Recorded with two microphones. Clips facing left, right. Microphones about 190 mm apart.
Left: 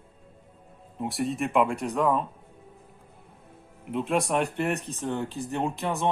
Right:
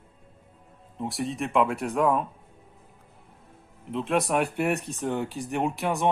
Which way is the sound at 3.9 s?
Centre (ahead or behind).